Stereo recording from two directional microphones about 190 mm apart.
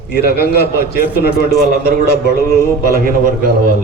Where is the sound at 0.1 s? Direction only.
55° left (ahead or behind).